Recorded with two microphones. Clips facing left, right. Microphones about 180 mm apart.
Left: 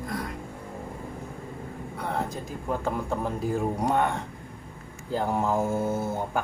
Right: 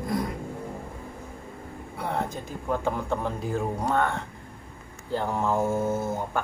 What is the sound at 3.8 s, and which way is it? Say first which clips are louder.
Speech: left 1 dB; 15° left (ahead or behind).